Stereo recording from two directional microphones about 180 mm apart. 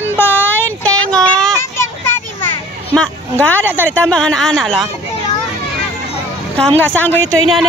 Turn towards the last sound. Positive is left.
turn(degrees=10)  # may be behind; listen again after turning